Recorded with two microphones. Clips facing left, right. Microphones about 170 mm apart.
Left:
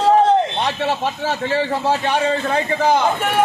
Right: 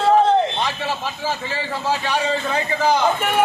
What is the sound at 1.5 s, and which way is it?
A man's voice, 60° left (ahead or behind).